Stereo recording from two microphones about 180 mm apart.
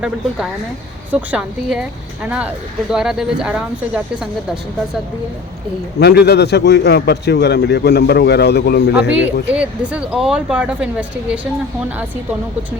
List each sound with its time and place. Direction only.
1.1 s speech: 5° right (ahead or behind)
6.0 s a man's voice: 65° left (ahead or behind)
9.0 s speech: 5° right (ahead or behind)